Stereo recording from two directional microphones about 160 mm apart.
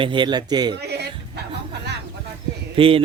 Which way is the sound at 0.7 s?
90° right.